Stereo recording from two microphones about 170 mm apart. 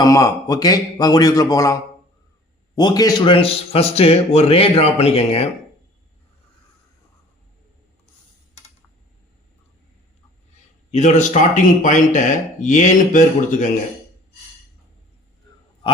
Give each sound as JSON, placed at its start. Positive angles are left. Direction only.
{"t": 0.0, "sound": "a man's voice", "side_deg": 20}
{"t": 10.9, "sound": "a man's voice", "side_deg": 45}